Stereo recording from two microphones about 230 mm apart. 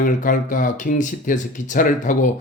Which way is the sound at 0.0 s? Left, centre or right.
Left.